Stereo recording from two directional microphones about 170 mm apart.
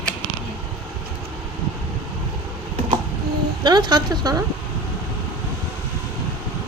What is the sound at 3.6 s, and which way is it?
Speech, 25° right (ahead or behind).